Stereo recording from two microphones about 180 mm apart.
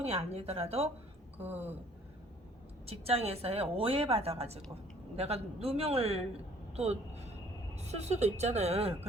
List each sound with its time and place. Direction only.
0.0 s a woman's voice: 35° right (ahead or behind)
2.8 s a woman's voice: 35° right (ahead or behind)